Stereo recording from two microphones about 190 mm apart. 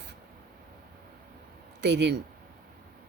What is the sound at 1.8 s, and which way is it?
Speech, 65° right (ahead or behind).